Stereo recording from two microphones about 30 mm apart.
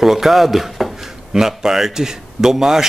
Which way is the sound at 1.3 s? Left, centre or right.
Centre.